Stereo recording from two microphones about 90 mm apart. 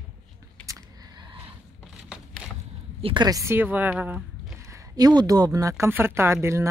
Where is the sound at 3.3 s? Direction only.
40° right (ahead or behind).